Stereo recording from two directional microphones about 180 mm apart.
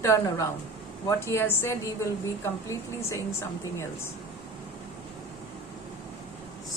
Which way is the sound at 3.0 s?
15° left (ahead or behind).